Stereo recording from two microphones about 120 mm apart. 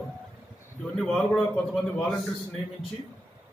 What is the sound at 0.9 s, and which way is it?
A man's voice, 5° left (ahead or behind).